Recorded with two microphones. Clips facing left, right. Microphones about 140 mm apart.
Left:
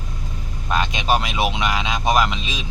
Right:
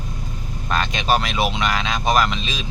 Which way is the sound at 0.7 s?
15° left (ahead or behind).